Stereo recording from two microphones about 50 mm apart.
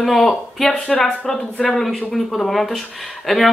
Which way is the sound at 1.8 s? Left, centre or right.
Centre.